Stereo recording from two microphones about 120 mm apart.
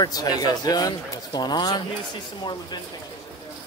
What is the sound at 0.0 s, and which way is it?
Speech, 35° left (ahead or behind).